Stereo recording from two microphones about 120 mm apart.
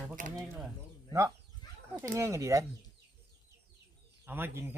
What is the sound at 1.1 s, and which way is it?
Speech, 25° right (ahead or behind).